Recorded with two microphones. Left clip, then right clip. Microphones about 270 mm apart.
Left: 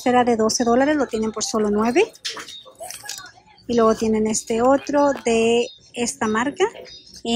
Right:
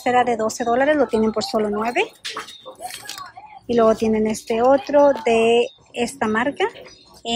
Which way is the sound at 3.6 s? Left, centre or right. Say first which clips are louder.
Right 1 dB; centre.